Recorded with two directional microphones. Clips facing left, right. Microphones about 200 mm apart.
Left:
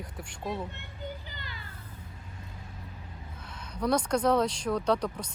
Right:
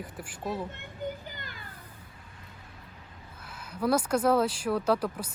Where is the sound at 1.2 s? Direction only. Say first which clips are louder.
Right 2 dB; 50° right (ahead or behind).